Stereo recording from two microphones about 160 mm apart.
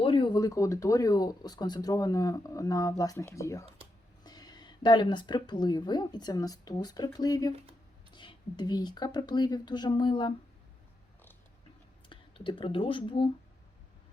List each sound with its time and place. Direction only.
0.0 s speech: 30° left (ahead or behind)
12.0 s speech: 30° left (ahead or behind)